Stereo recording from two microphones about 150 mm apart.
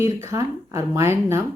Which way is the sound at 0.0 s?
20° right (ahead or behind).